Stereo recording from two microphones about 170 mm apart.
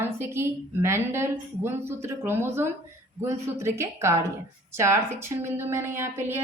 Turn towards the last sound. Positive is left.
turn(degrees=-15)  # may be behind; listen again after turning